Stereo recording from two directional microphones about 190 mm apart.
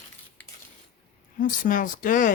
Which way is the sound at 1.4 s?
45° left (ahead or behind).